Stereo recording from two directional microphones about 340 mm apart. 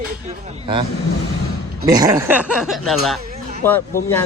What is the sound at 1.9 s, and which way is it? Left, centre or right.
Speech, centre.